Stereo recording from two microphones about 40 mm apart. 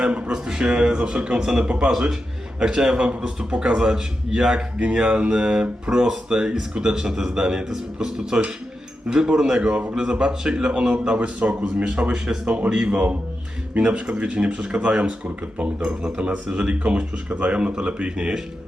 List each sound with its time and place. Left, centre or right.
0.0 s a man's voice: right
1.9 s a man's voice: centre
4.8 s a man's voice: right
9.6 s a man's voice: right
11.3 s speech: right
12.1 s a man's voice: centre
12.9 s a man's voice: right; by 16.2 s centre
16.2 s speech: right